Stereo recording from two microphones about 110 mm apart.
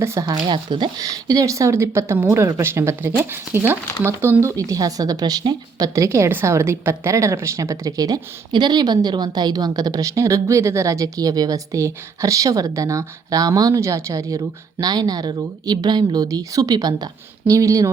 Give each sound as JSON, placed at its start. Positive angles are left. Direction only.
{"t": 0.0, "sound": "speech", "side_deg": -30}
{"t": 0.4, "sound": "a woman's voice", "side_deg": -45}
{"t": 5.9, "sound": "a woman's voice", "side_deg": -25}